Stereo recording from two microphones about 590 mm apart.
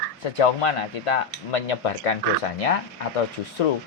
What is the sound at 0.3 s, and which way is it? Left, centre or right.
Cutlery, left.